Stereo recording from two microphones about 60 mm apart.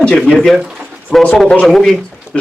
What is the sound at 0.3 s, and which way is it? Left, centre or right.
Speech, centre.